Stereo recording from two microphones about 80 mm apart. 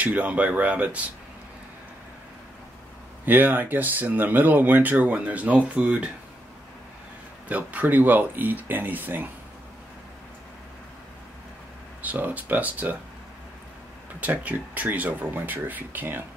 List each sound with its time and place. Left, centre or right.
0.0 s speech: centre
3.3 s speech: right
7.4 s speech: centre
12.0 s speech: centre
14.2 s speech: centre